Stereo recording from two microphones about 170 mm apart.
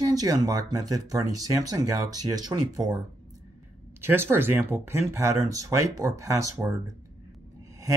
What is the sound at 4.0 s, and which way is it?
Speech, 10° right (ahead or behind).